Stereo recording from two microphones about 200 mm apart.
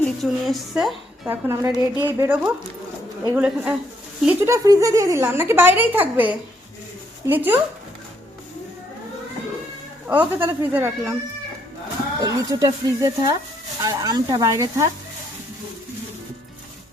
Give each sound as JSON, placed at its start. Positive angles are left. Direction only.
{"t": 0.0, "sound": "a woman's voice", "side_deg": 0}
{"t": 1.5, "sound": "a woman's voice", "side_deg": -15}
{"t": 10.1, "sound": "a woman's voice", "side_deg": -10}
{"t": 12.2, "sound": "a woman's voice", "side_deg": -20}